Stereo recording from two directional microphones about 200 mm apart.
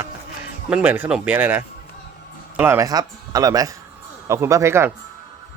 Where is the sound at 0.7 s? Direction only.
5° right (ahead or behind).